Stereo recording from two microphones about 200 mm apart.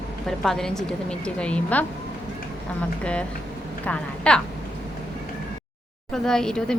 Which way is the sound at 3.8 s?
5° left (ahead or behind).